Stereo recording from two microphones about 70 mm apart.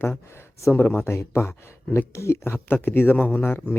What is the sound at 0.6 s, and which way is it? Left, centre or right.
A man's voice, left.